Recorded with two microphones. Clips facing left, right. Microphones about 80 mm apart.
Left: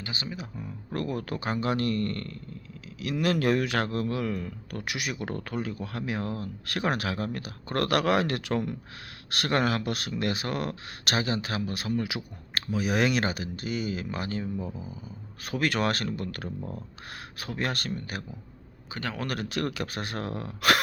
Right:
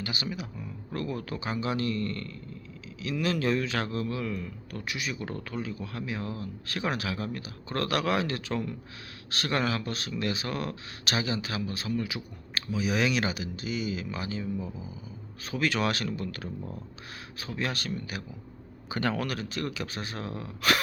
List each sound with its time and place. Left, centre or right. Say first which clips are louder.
0.0 s speech: right 2 dB; left
0.9 s a man's voice: left 2 dB; left
15.4 s speech: left 1 dB; left
18.9 s speech: right 5 dB; centre
19.3 s a man's voice: left 3 dB; left